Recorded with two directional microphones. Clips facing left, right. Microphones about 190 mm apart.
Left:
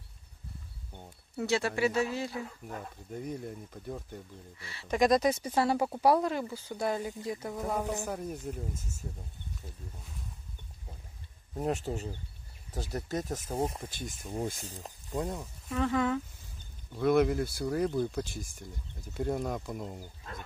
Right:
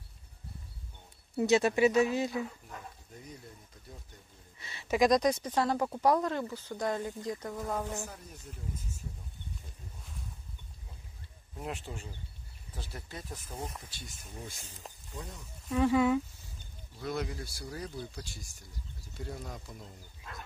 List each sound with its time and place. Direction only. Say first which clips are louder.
1.3 s speech: right 4 dB; 20° right (ahead or behind)
3.3 s speech: left 11 dB; 55° left (ahead or behind)
4.6 s speech: left 1 dB; 20° right (ahead or behind)
4.8 s speech: even; centre (ahead or behind); by 8.0 s 15° left (ahead or behind)
8.0 s speech: left 9 dB; 60° left (ahead or behind)
11.5 s speech: left 8 dB; 40° left (ahead or behind)
14.6 s speech: left 5 dB; 40° left (ahead or behind)
15.7 s speech: right 3 dB; 10° right (ahead or behind)
16.9 s speech: left 11 dB; 60° left (ahead or behind)